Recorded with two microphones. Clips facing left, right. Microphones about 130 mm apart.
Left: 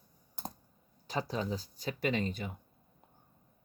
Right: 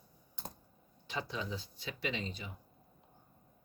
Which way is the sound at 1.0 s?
40° left (ahead or behind).